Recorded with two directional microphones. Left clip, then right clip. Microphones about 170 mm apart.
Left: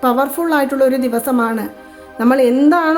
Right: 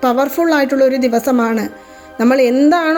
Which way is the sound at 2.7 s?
20° right (ahead or behind).